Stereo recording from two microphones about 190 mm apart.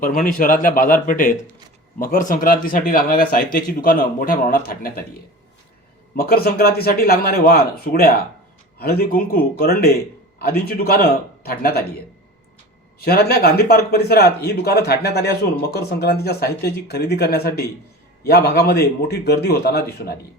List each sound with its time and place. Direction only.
0.3 s speech: 45° left (ahead or behind)
6.1 s speech: 55° left (ahead or behind)
13.1 s speech: 55° left (ahead or behind)